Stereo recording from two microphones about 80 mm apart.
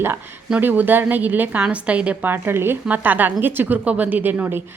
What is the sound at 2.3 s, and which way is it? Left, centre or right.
Speech, right.